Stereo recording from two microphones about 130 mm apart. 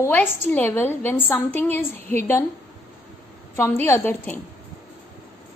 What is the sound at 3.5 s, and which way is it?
Speech, 15° left (ahead or behind).